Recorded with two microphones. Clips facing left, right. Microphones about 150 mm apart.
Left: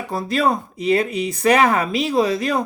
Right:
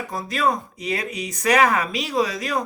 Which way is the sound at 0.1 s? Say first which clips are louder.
Left 4 dB; 30° left (ahead or behind).